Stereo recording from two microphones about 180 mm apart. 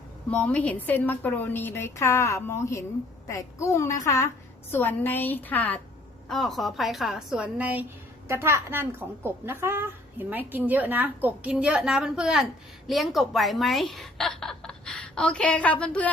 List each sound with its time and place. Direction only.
0.3 s a woman's voice: 10° left (ahead or behind)